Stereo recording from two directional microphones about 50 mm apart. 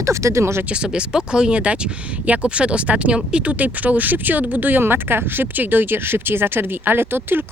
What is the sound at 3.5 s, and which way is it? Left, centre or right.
Speech, right.